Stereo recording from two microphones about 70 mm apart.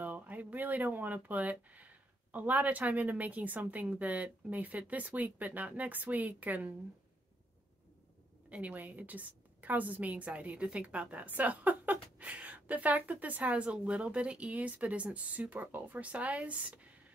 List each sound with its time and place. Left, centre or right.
0.0 s speech: right
8.5 s a woman's voice: centre